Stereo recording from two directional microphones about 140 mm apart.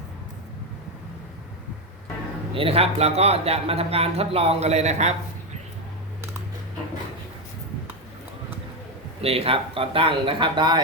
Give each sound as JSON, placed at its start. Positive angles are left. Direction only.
{"t": 2.6, "sound": "speech", "side_deg": -45}
{"t": 9.2, "sound": "speech", "side_deg": -45}